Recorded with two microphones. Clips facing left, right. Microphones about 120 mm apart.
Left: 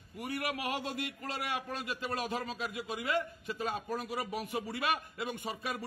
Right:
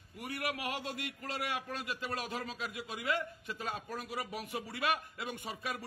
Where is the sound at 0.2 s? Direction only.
35° left (ahead or behind).